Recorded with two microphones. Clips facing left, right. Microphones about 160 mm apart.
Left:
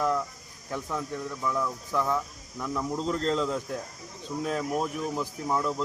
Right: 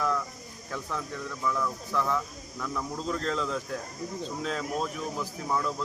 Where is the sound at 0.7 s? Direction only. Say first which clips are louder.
Left 3 dB; 15° left (ahead or behind).